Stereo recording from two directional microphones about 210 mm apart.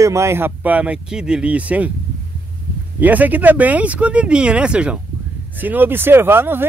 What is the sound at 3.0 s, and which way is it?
Speech, 10° right (ahead or behind).